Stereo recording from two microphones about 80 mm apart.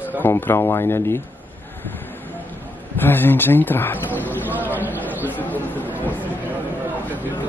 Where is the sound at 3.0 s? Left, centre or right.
Left.